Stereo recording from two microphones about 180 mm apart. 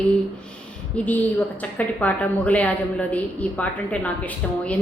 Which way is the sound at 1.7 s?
10° left (ahead or behind).